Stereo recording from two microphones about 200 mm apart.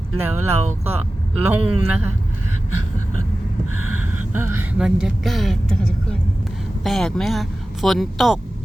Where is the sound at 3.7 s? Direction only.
90° right.